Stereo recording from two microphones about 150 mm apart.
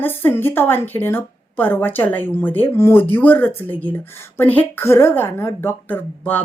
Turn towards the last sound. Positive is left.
turn(degrees=10)  # may be behind; listen again after turning